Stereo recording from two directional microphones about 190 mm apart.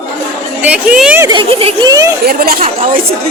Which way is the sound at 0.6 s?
5° right (ahead or behind).